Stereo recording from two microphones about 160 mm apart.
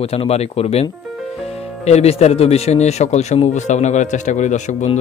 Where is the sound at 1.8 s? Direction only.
40° left (ahead or behind).